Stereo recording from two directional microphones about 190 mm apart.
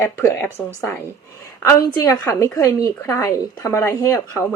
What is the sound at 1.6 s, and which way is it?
A woman's voice, 15° left (ahead or behind).